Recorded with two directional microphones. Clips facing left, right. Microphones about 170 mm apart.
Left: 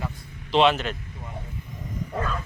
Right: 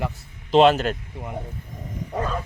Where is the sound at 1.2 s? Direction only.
70° right (ahead or behind).